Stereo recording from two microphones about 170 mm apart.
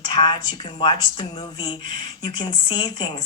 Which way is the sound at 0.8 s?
25° left (ahead or behind).